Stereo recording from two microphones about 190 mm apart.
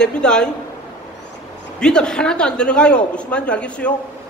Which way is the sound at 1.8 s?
5° left (ahead or behind).